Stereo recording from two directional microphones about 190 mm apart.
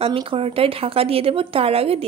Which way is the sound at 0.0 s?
30° right (ahead or behind).